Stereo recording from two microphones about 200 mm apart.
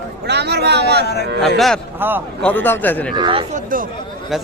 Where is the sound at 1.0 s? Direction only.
55° left (ahead or behind).